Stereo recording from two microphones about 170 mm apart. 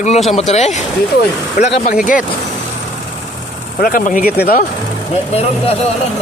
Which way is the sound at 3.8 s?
55° left (ahead or behind).